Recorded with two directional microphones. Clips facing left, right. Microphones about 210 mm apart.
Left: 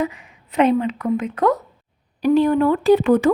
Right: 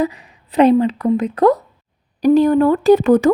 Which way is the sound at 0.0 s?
35° right (ahead or behind).